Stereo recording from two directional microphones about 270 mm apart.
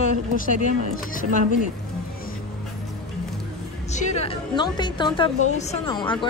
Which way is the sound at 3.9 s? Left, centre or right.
Left.